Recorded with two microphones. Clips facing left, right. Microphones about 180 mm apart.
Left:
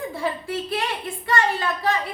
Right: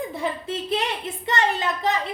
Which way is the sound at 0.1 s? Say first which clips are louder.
Left 1 dB; 20° right (ahead or behind).